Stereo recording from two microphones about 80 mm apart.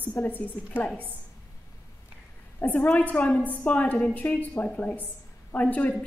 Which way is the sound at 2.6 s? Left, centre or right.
Left.